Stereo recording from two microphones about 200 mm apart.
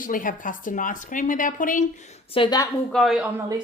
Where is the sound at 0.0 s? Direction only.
45° left (ahead or behind).